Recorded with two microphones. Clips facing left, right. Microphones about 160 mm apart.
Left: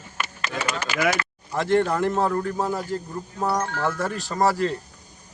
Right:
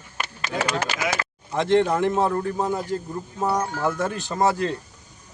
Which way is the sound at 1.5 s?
20° right (ahead or behind).